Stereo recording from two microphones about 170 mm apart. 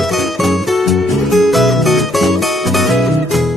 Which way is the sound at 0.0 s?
Centre (ahead or behind).